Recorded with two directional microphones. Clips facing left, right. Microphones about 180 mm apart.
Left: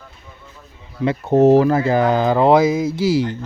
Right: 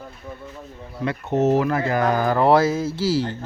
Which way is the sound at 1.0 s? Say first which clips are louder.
Left 7 dB; 30° left (ahead or behind).